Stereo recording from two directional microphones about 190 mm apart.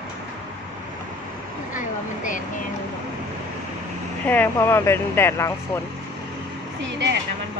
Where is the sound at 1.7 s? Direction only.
45° left (ahead or behind).